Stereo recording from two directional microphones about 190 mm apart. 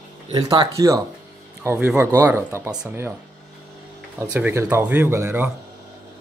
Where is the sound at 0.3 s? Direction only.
20° right (ahead or behind).